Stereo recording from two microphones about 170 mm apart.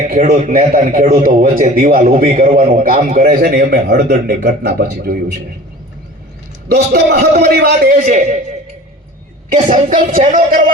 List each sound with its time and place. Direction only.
0.0 s a man's voice: 50° right (ahead or behind); by 5.2 s 65° right (ahead or behind)
6.7 s a man's voice: 75° right (ahead or behind); by 8.4 s 55° right (ahead or behind)
9.6 s a woman's voice: 50° right (ahead or behind)